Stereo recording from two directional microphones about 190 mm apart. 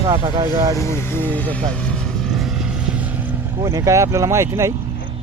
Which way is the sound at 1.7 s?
5° left (ahead or behind).